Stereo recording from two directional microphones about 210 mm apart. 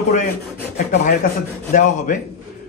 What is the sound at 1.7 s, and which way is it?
Speech, 35° left (ahead or behind).